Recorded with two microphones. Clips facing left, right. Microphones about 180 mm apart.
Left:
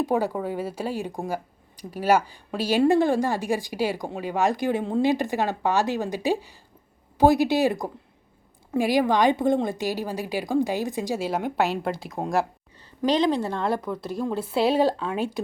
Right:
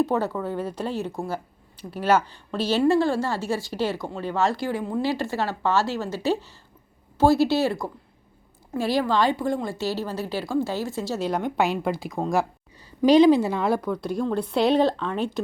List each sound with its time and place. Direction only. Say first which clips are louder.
0.0 s a woman's voice: even; 15° left (ahead or behind)
13.0 s a woman's voice: right 7 dB; 10° right (ahead or behind); by 15.4 s 10° left (ahead or behind)